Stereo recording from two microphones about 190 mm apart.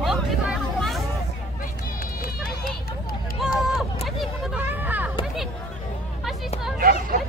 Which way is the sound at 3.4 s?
Centre (ahead or behind).